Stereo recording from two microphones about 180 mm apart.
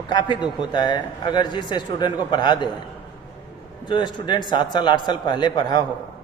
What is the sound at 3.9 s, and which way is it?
A man's voice, 25° left (ahead or behind).